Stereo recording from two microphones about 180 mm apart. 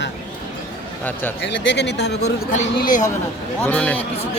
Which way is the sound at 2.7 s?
50° left (ahead or behind).